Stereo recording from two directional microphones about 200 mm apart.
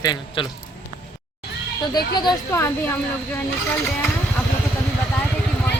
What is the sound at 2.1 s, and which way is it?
Speech, 15° left (ahead or behind).